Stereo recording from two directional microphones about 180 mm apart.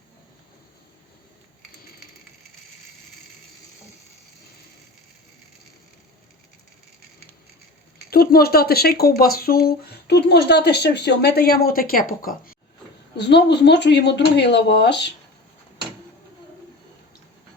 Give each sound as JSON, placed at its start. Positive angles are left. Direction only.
{"t": 8.1, "sound": "speech", "side_deg": 60}
{"t": 13.1, "sound": "speech", "side_deg": 70}